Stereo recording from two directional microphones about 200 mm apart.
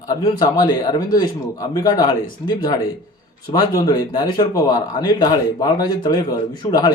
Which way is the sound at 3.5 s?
20° left (ahead or behind).